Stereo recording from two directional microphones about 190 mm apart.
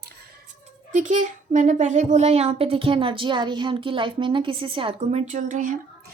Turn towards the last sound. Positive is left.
turn(degrees=-45)  # may be behind; listen again after turning